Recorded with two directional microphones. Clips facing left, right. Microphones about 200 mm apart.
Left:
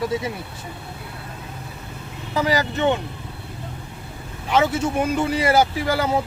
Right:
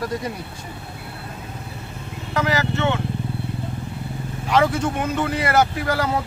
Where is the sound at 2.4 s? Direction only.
15° left (ahead or behind).